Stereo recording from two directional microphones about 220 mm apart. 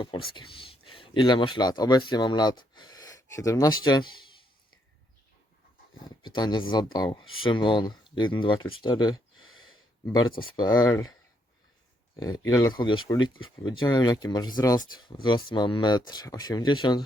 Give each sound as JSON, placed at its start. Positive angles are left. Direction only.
{"t": 0.3, "sound": "speech", "side_deg": 25}
{"t": 6.1, "sound": "speech", "side_deg": 20}
{"t": 9.3, "sound": "a sound", "side_deg": 70}
{"t": 10.5, "sound": "speech", "side_deg": 20}
{"t": 12.1, "sound": "speech", "side_deg": 15}